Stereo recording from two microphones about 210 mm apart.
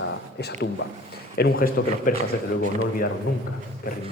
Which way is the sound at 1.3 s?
45° left (ahead or behind).